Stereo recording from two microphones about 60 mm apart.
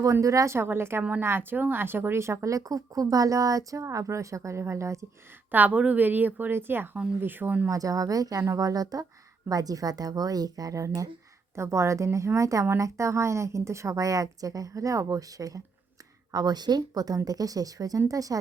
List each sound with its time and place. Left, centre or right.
0.0 s speech: right
0.5 s a woman's voice: right
5.5 s speech: right
7.7 s a woman's voice: right
11.5 s a woman's voice: right
16.3 s speech: right
18.1 s a woman's voice: right